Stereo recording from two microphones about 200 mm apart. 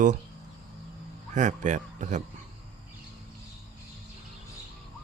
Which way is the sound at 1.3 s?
35° right (ahead or behind).